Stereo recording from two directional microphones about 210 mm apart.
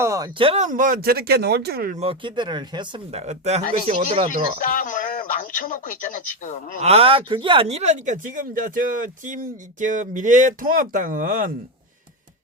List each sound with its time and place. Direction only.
0.0 s speech: 15° right (ahead or behind); by 2.0 s 45° right (ahead or behind)
2.0 s speech: 25° right (ahead or behind)
4.6 s a man's voice: 40° left (ahead or behind)
6.8 s speech: 30° right (ahead or behind)